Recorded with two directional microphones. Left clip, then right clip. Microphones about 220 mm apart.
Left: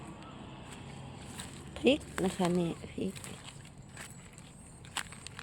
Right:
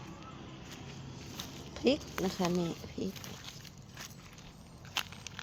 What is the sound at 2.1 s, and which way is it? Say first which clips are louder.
Speech: left 2 dB; 10° left (ahead or behind).